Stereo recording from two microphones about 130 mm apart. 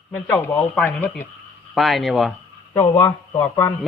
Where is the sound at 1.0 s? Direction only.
15° left (ahead or behind).